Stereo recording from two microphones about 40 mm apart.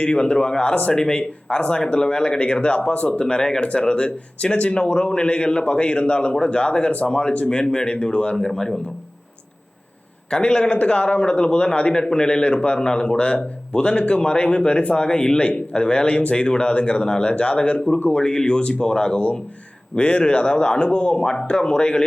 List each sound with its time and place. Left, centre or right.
0.1 s a man's voice: left
8.4 s speech: centre
10.2 s a man's voice: centre
10.8 s a man's voice: left
11.9 s a man's voice: centre